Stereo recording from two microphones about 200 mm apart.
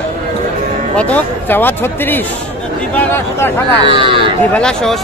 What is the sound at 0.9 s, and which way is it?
Speech, 10° left (ahead or behind).